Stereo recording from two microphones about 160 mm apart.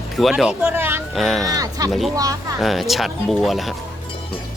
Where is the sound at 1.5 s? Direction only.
20° right (ahead or behind).